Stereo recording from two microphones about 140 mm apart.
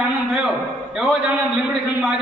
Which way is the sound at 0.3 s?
5° right (ahead or behind).